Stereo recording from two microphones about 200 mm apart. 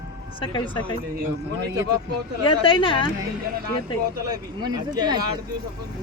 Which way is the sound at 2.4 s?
25° left (ahead or behind).